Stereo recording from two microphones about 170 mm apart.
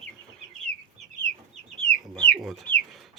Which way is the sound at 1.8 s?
5° left (ahead or behind).